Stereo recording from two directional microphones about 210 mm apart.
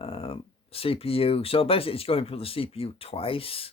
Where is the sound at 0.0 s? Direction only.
25° left (ahead or behind).